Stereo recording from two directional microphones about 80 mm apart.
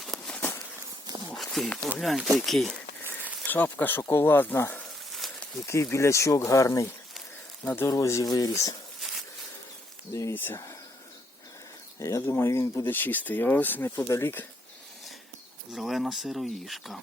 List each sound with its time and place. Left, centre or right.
0.3 s a sound: centre
1.1 s walk: right
1.5 s speech: centre
3.0 s a sound: right
3.4 s speech: left
5.2 s a sound: centre
5.5 s speech: left
9.0 s a sound: centre
10.1 s speech: left
10.3 s speech: left
11.9 s speech: left
14.1 s speech: left
15.7 s speech: centre